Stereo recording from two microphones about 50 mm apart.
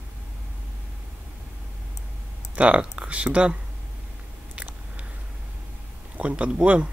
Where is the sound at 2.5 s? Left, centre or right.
Right.